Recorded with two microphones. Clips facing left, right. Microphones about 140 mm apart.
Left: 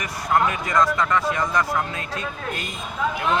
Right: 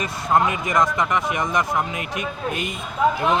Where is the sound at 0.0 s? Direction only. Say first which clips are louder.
Right 2 dB; 25° right (ahead or behind).